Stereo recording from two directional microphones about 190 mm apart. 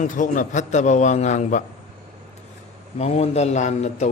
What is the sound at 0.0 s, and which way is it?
A man's voice, 40° left (ahead or behind).